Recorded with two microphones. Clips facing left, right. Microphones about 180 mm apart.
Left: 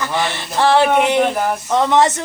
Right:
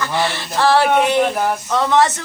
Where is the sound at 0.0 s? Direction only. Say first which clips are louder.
Even; 20° left (ahead or behind).